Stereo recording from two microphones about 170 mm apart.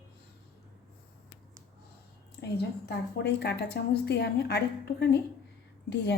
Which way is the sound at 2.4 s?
90° left.